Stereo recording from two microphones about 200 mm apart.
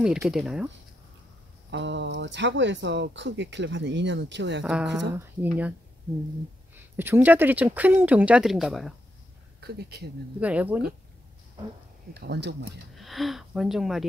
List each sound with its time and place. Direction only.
0.0 s speech: 5° right (ahead or behind)
1.7 s speech: 65° right (ahead or behind)
5.1 s speech: 10° right (ahead or behind)
9.6 s speech: 55° right (ahead or behind)
10.4 s speech: 5° right (ahead or behind)
12.1 s speech: 55° right (ahead or behind)
12.9 s speech: centre (ahead or behind)